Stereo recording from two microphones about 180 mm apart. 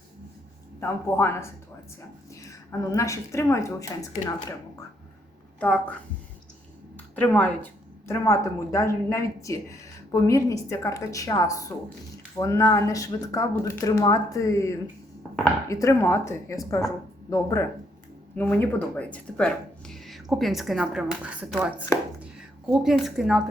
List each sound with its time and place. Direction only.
0.8 s a woman's voice: 15° left (ahead or behind)
5.5 s speech: 5° left (ahead or behind)
7.2 s speech: 10° left (ahead or behind)